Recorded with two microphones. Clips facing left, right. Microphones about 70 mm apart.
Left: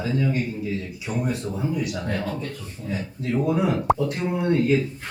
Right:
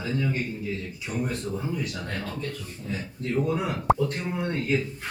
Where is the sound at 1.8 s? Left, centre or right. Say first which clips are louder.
Left 5 dB; centre.